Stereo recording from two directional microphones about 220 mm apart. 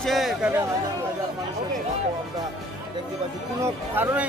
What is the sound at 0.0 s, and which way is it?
Speech, centre (ahead or behind).